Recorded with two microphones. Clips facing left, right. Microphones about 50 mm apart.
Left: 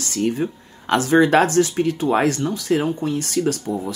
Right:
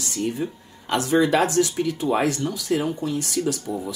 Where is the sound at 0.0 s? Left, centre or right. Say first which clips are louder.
Left 4 dB; left.